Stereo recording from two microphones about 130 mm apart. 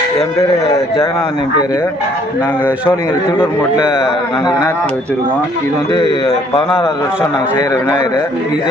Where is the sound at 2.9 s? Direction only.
20° left (ahead or behind).